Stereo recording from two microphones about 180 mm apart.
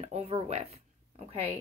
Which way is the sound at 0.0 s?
35° right (ahead or behind).